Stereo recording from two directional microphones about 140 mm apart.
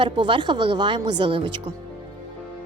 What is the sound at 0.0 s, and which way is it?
A woman's voice, 35° right (ahead or behind).